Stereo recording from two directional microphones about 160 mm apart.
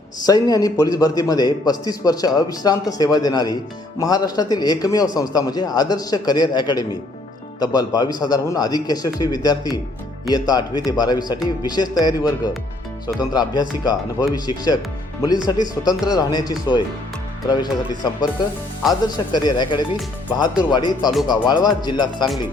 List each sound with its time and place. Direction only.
0.3 s a man's voice: 25° left (ahead or behind)